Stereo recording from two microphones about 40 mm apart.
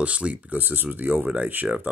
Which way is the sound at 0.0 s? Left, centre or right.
Right.